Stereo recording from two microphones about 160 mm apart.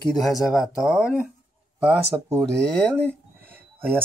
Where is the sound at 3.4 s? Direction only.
10° right (ahead or behind).